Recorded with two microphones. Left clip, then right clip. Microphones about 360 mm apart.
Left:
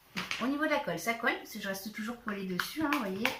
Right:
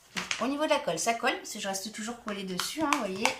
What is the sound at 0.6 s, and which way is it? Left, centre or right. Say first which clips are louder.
Speech: right 4 dB; centre.